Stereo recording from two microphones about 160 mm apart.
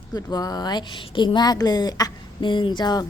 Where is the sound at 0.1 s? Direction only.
25° left (ahead or behind).